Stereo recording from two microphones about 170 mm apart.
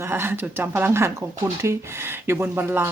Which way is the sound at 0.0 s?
15° right (ahead or behind).